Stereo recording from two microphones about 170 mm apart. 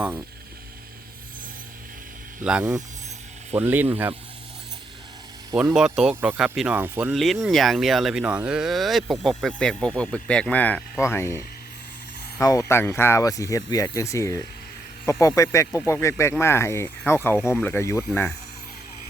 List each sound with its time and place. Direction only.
2.4 s speech: 5° right (ahead or behind)
5.7 s speech: 5° right (ahead or behind)
7.1 s speech: centre (ahead or behind)
17.3 s speech: 5° right (ahead or behind)
17.6 s speech: 15° left (ahead or behind)